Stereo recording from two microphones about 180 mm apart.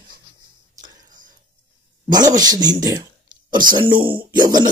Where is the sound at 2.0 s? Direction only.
20° right (ahead or behind).